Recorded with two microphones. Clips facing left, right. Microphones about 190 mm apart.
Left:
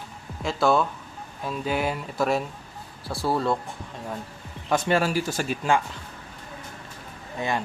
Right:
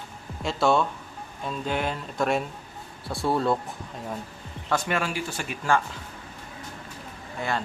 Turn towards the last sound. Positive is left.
turn(degrees=15)  # may be behind; listen again after turning